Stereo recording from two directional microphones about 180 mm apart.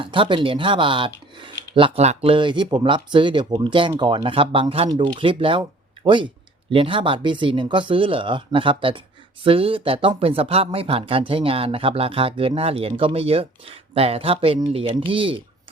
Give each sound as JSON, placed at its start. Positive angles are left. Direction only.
{"t": 0.0, "sound": "speech", "side_deg": -30}